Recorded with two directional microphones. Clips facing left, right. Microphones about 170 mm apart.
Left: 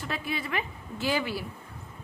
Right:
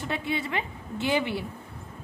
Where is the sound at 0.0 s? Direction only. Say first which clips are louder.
Right 3 dB; 25° right (ahead or behind).